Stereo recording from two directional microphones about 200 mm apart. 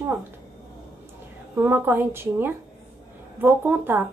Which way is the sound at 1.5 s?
10° right (ahead or behind).